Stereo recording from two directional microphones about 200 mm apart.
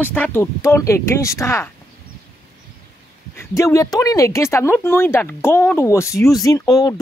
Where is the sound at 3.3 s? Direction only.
15° left (ahead or behind).